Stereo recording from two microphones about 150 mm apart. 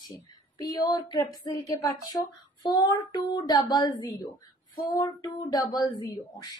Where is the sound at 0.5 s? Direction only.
25° left (ahead or behind).